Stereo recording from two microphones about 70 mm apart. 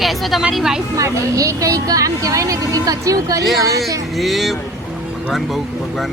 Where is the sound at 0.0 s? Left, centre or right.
Centre.